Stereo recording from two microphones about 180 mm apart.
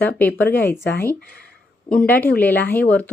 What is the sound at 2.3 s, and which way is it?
Speech, 10° left (ahead or behind).